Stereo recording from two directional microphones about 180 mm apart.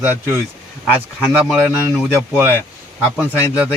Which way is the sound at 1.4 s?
Centre (ahead or behind).